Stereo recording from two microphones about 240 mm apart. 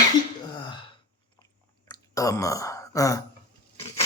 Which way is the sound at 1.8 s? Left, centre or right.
Centre.